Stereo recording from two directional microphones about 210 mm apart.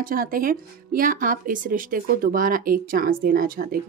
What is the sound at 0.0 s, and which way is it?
Speech, 40° right (ahead or behind).